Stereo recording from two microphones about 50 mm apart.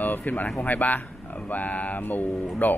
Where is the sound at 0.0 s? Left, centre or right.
Left.